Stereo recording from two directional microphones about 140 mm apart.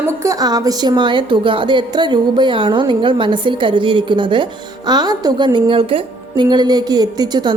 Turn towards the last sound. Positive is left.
turn(degrees=-30)  # may be behind; listen again after turning